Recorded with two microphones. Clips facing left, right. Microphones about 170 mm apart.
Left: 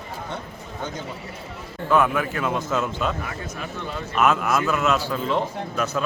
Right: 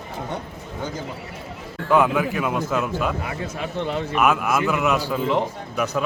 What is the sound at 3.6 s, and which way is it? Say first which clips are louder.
Speech: right 8 dB; 25° right (ahead or behind).